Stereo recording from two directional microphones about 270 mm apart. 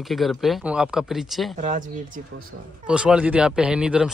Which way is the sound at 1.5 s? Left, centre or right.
Right.